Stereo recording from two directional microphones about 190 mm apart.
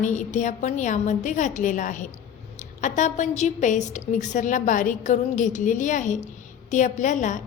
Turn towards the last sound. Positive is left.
turn(degrees=40)  # may be behind; listen again after turning